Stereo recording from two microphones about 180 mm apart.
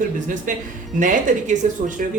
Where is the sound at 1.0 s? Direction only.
45° right (ahead or behind).